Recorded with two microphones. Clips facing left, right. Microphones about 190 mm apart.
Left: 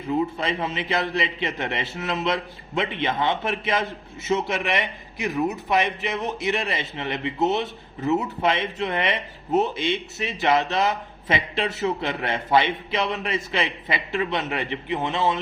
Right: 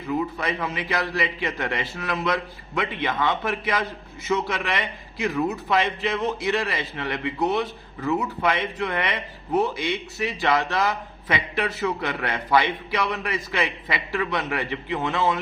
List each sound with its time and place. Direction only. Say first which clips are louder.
0.0 s a man's voice: left 2 dB; 25° left (ahead or behind)